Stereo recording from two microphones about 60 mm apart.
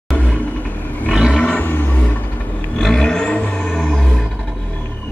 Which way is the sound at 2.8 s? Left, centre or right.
Centre.